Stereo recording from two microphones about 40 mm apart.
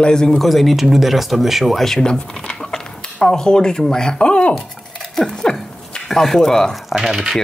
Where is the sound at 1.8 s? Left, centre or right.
Centre.